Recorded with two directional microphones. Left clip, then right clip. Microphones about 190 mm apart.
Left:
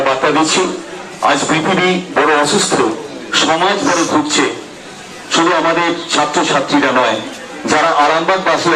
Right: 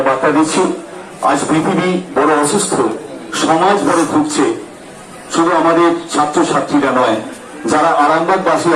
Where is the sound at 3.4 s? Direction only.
30° left (ahead or behind).